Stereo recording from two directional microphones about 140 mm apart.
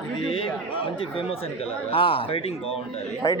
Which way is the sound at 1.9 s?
40° left (ahead or behind).